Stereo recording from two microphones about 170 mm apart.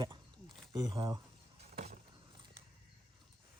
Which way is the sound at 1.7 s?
40° right (ahead or behind).